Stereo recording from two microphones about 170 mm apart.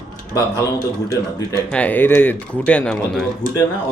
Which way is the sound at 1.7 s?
10° left (ahead or behind).